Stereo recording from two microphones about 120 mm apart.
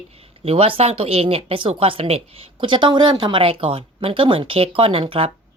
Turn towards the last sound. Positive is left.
turn(degrees=-50)  # may be behind; listen again after turning